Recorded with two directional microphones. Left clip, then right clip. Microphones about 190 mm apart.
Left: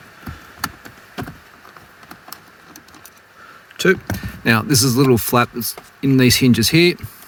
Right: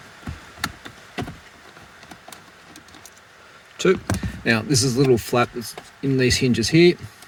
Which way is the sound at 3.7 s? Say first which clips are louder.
Left 3 dB; 45° left (ahead or behind).